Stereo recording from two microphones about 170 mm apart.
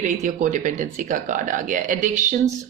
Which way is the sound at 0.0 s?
45° right (ahead or behind).